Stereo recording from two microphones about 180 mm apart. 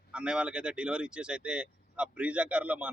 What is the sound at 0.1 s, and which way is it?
Speech, 5° right (ahead or behind).